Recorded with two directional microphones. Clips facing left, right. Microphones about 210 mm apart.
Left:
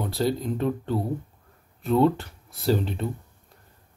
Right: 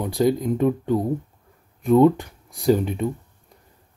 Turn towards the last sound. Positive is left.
turn(degrees=-15)  # may be behind; listen again after turning